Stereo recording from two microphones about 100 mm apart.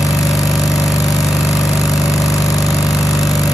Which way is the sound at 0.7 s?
35° left (ahead or behind).